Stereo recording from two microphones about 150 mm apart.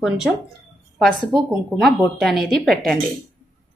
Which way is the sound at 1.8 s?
Centre (ahead or behind).